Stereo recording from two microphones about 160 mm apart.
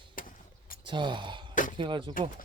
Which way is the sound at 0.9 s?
30° right (ahead or behind).